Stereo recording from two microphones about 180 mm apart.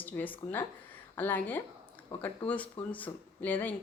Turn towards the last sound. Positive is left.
turn(degrees=10)  # may be behind; listen again after turning